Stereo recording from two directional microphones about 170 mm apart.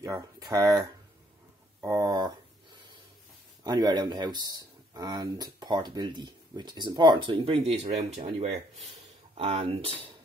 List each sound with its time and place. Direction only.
0.0 s speech: 20° right (ahead or behind)
1.8 s a sound: 20° right (ahead or behind)
3.6 s speech: 25° right (ahead or behind)